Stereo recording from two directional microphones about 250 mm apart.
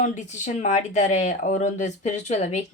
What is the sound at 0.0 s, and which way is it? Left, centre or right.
Speech, left.